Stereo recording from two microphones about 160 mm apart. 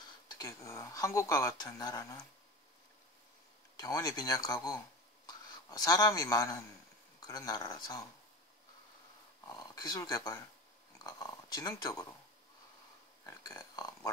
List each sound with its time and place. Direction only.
0.4 s speech: 20° left (ahead or behind)
3.8 s speech: 20° left (ahead or behind)
9.5 s speech: 25° left (ahead or behind)
13.2 s a sound: 20° left (ahead or behind)